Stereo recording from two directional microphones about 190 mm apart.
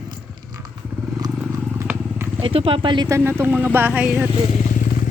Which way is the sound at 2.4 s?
30° right (ahead or behind).